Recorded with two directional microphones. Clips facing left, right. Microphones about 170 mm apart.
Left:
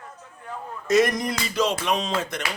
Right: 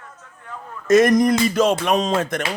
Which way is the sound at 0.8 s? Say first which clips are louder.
Right 7 dB; 50° right (ahead or behind).